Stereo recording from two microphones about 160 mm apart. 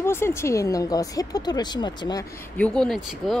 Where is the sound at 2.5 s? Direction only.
5° left (ahead or behind).